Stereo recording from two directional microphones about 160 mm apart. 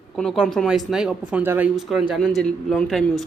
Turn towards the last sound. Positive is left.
turn(degrees=0)  # may be behind; listen again after turning